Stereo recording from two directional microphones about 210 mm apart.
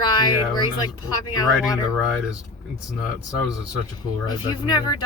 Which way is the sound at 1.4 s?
Centre (ahead or behind).